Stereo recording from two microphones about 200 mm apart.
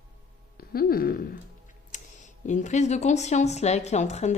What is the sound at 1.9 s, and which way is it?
Speech, 40° left (ahead or behind).